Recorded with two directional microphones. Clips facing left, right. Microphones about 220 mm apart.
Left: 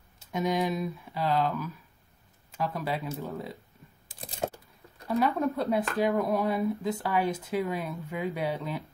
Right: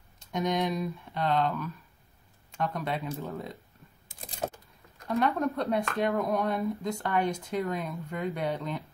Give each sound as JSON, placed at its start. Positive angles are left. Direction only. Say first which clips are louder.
{"t": 0.2, "sound": "speech", "louder": "left 1 dB", "side_deg": 5}
{"t": 4.1, "sound": "typing", "louder": "left 2 dB", "side_deg": 30}
{"t": 5.0, "sound": "speech", "louder": "left 1 dB", "side_deg": 0}